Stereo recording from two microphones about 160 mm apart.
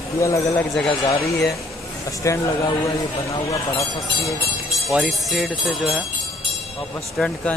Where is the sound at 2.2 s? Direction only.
20° left (ahead or behind).